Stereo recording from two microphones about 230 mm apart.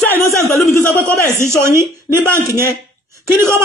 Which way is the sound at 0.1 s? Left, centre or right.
Centre.